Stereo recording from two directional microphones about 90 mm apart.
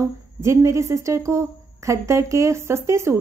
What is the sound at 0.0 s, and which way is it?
Speech, 35° right (ahead or behind).